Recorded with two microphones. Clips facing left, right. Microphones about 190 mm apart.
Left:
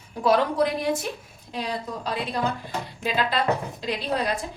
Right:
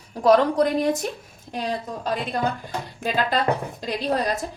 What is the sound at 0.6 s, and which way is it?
Speech, 45° right (ahead or behind).